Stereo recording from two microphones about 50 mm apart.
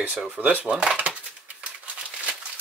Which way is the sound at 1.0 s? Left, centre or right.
Right.